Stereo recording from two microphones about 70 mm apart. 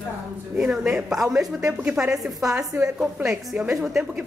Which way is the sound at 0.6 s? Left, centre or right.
Centre.